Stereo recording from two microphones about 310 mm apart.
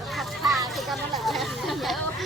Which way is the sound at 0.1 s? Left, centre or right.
Centre.